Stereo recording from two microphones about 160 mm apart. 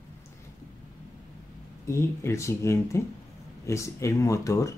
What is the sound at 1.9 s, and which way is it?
Speech, 15° left (ahead or behind).